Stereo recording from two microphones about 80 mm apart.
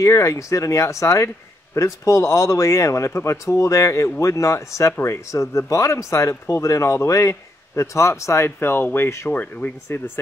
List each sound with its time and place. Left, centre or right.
0.0 s speech: left